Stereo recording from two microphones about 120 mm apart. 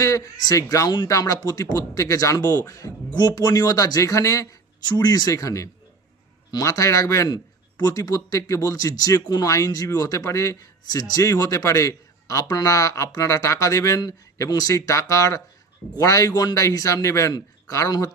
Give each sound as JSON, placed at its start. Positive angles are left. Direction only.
{"t": 0.0, "sound": "speech", "side_deg": 25}